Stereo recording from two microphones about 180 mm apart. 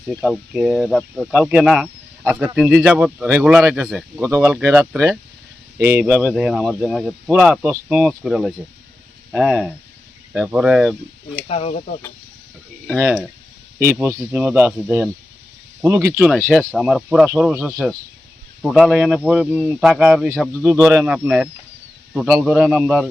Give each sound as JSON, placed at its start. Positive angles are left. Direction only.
{"t": 0.1, "sound": "speech", "side_deg": -5}
{"t": 4.3, "sound": "speech", "side_deg": -15}
{"t": 11.4, "sound": "speech", "side_deg": 35}
{"t": 12.9, "sound": "speech", "side_deg": -5}
{"t": 14.2, "sound": "speech", "side_deg": -10}
{"t": 16.5, "sound": "speech", "side_deg": -5}
{"t": 20.7, "sound": "speech", "side_deg": -10}